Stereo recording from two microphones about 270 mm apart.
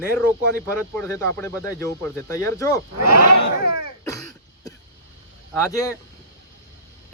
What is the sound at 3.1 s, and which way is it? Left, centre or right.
Speech, right.